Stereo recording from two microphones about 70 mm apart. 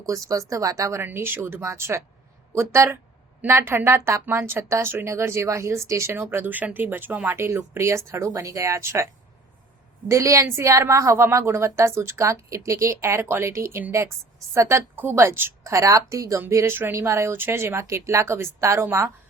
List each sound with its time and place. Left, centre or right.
0.0 s speech: right
1.0 s a woman's voice: right
1.6 s a woman's voice: right
6.1 s a woman's voice: right
10.1 s a woman's voice: right
15.7 s a woman's voice: right